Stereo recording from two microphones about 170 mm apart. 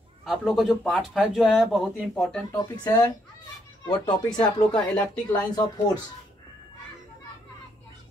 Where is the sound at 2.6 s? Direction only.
20° left (ahead or behind).